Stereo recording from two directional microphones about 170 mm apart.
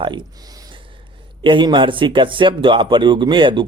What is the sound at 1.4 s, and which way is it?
Speech, 30° right (ahead or behind).